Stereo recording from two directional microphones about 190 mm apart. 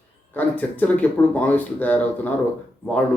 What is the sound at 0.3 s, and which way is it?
Speech, 10° left (ahead or behind).